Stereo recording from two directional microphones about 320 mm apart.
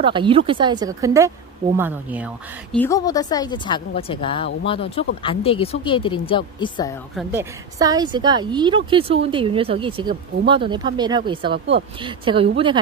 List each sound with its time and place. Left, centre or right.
0.0 s a woman's voice: centre
2.8 s speech: centre
7.2 s a woman's voice: centre
11.5 s speech: right
12.0 s a woman's voice: centre